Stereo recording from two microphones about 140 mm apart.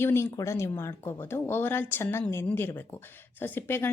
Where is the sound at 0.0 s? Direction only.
20° left (ahead or behind).